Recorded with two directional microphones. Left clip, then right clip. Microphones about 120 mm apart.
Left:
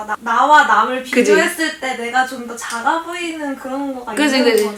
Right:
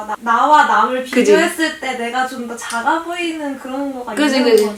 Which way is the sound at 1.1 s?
Centre (ahead or behind).